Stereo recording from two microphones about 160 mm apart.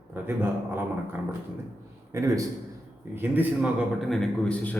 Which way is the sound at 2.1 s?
20° right (ahead or behind).